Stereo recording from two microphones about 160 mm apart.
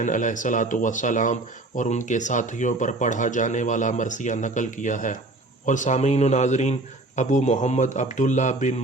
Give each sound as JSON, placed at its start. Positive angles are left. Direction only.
{"t": 0.0, "sound": "speech", "side_deg": 55}